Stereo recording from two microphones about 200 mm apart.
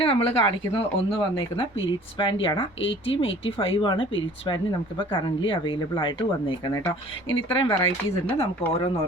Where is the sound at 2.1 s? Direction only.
25° left (ahead or behind).